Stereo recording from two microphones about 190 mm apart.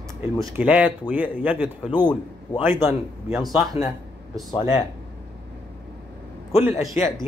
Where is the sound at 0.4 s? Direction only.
5° right (ahead or behind).